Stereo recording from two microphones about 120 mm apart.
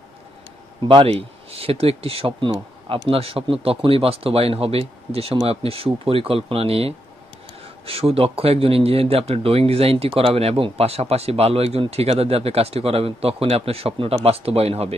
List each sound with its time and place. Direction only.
0.8 s speech: 50° right (ahead or behind)